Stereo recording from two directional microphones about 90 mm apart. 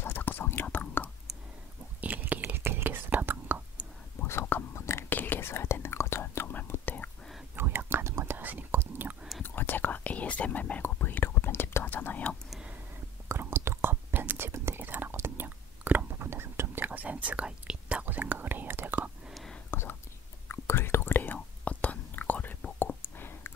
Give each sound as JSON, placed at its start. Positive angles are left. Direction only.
{"t": 0.0, "sound": "whispering", "side_deg": 20}
{"t": 2.0, "sound": "whispering", "side_deg": -20}
{"t": 4.2, "sound": "whispering", "side_deg": 25}
{"t": 7.5, "sound": "whispering", "side_deg": -25}
{"t": 9.4, "sound": "whispering", "side_deg": 20}
{"t": 12.4, "sound": "a sound", "side_deg": -5}
{"t": 13.3, "sound": "whispering", "side_deg": -25}
{"t": 19.2, "sound": "whispering", "side_deg": 0}
{"t": 19.7, "sound": "whispering", "side_deg": 25}